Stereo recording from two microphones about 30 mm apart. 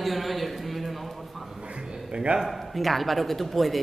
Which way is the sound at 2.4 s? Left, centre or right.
Centre.